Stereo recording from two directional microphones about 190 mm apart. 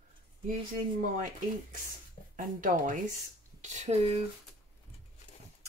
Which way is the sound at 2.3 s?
45° right (ahead or behind).